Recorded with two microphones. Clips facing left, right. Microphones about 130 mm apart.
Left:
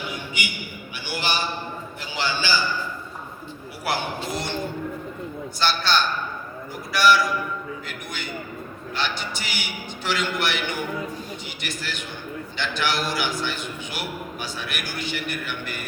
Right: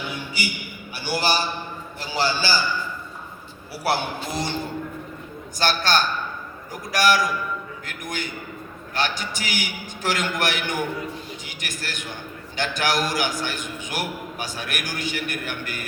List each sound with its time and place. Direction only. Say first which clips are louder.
0.4 s a man's voice: right 1 dB; 35° right (ahead or behind)
4.3 s a man's voice: right 1 dB; 35° right (ahead or behind)
5.5 s a man's voice: right 1 dB; 45° right (ahead or behind)
11.6 s a man's voice: even; 45° right (ahead or behind)